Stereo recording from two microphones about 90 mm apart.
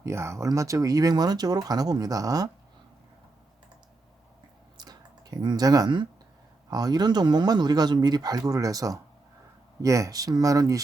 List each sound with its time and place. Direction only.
0.0 s speech: 30° right (ahead or behind)
4.8 s a sound: 45° right (ahead or behind)
6.7 s speech: 45° right (ahead or behind)